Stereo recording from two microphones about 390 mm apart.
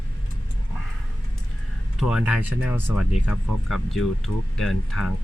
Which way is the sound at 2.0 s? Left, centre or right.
Centre.